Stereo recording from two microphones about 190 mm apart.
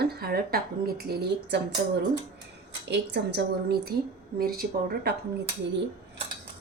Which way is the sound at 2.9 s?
60° right (ahead or behind).